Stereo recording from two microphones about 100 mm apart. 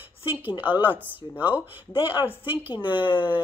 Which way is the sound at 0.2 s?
20° right (ahead or behind).